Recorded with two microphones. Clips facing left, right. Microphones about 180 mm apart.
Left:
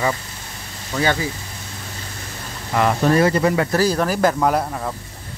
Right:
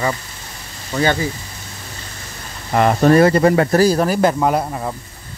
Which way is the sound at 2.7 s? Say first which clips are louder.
Right 4 dB; 45° right (ahead or behind).